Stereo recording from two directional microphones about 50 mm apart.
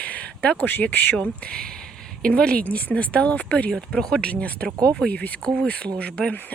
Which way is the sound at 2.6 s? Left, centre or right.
Left.